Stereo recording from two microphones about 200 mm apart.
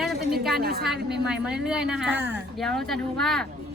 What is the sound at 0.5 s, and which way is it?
Speech, 50° right (ahead or behind).